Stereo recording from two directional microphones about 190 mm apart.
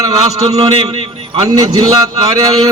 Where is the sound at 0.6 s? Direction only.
30° right (ahead or behind).